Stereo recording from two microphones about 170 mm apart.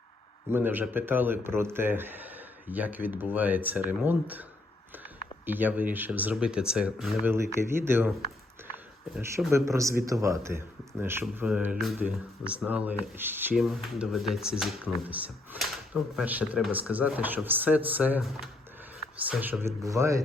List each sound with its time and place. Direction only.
0.5 s speech: 10° right (ahead or behind)
7.3 s speech: 15° right (ahead or behind)
9.5 s speech: 15° right (ahead or behind)
13.6 s speech: centre (ahead or behind); by 20.2 s 20° right (ahead or behind)